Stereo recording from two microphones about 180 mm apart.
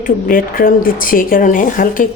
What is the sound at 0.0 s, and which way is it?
Speech, 50° left (ahead or behind).